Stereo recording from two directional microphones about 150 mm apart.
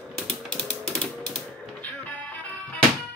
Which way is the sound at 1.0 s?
10° left (ahead or behind).